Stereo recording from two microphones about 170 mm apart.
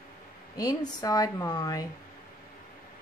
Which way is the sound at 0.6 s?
20° left (ahead or behind).